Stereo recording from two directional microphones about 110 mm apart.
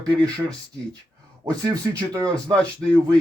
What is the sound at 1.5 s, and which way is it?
Speech, 35° right (ahead or behind).